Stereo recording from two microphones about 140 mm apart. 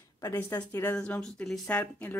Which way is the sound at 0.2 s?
15° left (ahead or behind).